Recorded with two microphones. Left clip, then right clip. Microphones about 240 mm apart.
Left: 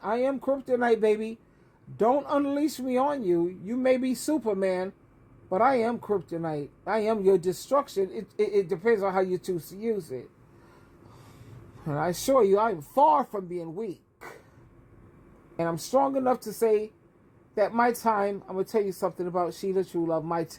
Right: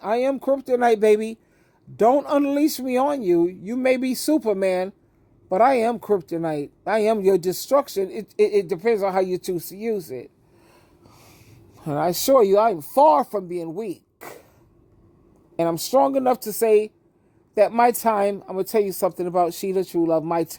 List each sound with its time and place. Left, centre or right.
0.0 s speech: right
11.8 s speech: right
15.5 s speech: right